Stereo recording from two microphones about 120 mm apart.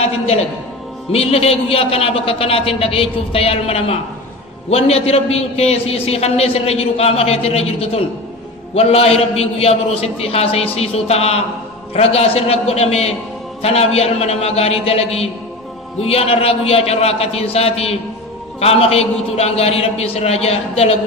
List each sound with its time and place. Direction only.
0.0 s a man's voice: 60° left (ahead or behind)